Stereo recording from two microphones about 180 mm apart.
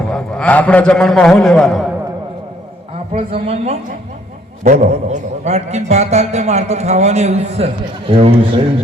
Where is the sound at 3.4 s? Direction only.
35° right (ahead or behind).